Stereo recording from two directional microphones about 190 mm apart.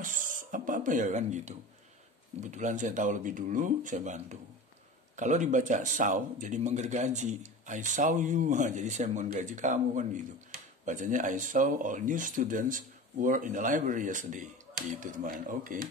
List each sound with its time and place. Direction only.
0.0 s speech: 45° right (ahead or behind)